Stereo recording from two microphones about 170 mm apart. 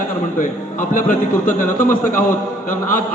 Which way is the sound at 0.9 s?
50° left (ahead or behind).